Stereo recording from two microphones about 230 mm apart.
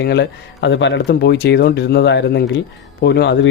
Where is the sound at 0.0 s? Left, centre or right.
Left.